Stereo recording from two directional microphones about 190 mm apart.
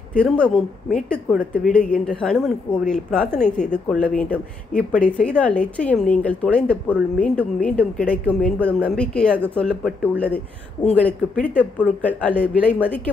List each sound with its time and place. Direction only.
0.1 s a woman's voice: 5° left (ahead or behind)